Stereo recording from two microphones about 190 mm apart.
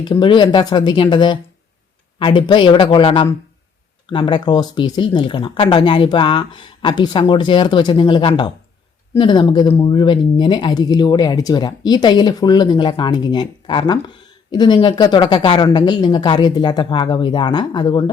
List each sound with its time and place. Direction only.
0.0 s speech: 25° left (ahead or behind)